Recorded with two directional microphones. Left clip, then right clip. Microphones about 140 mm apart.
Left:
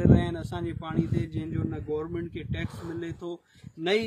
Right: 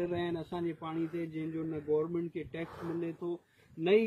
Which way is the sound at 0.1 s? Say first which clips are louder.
Left 8 dB; 30° left (ahead or behind).